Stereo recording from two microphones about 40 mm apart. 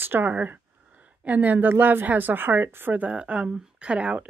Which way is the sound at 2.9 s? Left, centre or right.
Right.